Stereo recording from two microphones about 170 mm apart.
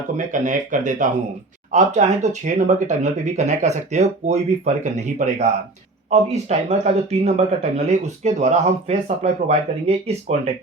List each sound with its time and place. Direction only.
0.2 s speech: 50° right (ahead or behind)